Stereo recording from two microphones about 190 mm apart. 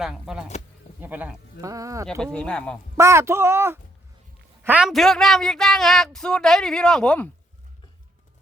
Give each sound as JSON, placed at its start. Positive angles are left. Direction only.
{"t": 0.0, "sound": "speech", "side_deg": 0}
{"t": 2.0, "sound": "speech", "side_deg": 5}
{"t": 3.0, "sound": "speech", "side_deg": -15}